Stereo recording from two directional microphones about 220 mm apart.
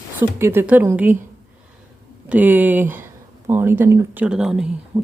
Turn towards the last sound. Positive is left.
turn(degrees=-5)  # may be behind; listen again after turning